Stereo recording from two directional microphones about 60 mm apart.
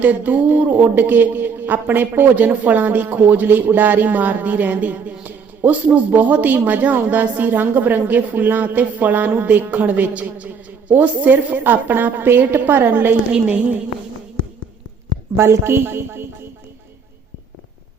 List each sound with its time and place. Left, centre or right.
0.0 s a woman's voice: right
15.4 s a man's voice: right